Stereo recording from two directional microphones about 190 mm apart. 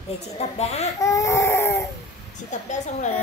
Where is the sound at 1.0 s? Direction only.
15° left (ahead or behind).